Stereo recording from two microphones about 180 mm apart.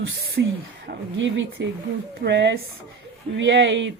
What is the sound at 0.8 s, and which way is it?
Speech, 90° right.